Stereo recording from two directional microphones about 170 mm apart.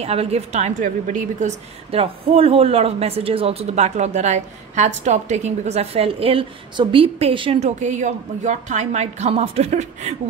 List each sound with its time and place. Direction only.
0.0 s a woman's voice: 35° right (ahead or behind)
7.8 s a woman's voice: 45° right (ahead or behind)